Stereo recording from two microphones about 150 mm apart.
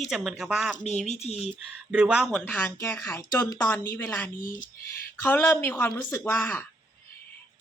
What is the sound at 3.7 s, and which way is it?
Speech, 10° left (ahead or behind).